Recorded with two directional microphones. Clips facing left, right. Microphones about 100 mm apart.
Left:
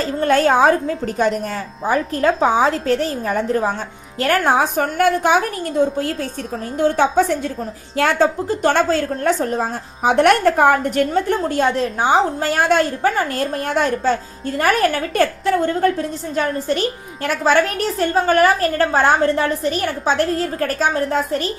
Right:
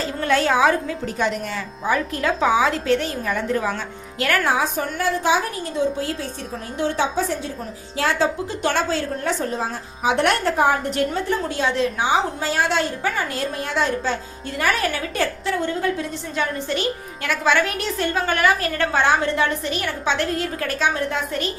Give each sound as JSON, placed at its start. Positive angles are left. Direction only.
{"t": 0.0, "sound": "a woman's voice", "side_deg": 45}